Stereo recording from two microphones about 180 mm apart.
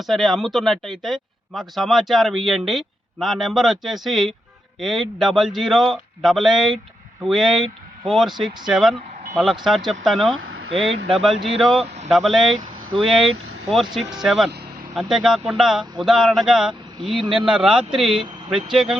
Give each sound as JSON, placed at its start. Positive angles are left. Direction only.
{"t": 0.0, "sound": "speech", "side_deg": 0}
{"t": 10.3, "sound": "a sound", "side_deg": -90}
{"t": 11.1, "sound": "speech", "side_deg": 0}
{"t": 11.8, "sound": "vehicle", "side_deg": -35}
{"t": 12.0, "sound": "speech", "side_deg": 0}